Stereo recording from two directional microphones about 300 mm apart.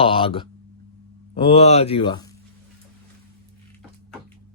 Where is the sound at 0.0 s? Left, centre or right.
Centre.